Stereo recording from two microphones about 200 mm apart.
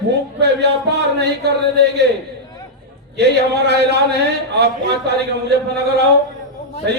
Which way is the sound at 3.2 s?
55° right (ahead or behind).